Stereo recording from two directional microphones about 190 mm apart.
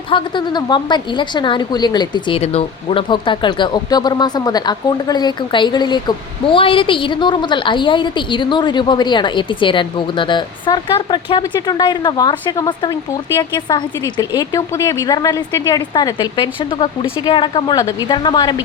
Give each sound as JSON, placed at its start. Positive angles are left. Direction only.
{"t": 0.1, "sound": "a woman's voice", "side_deg": 25}